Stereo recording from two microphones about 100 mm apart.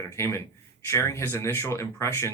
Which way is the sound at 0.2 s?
25° left (ahead or behind).